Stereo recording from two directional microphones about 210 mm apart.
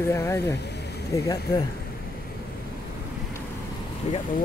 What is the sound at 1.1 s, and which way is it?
Speech, 15° left (ahead or behind).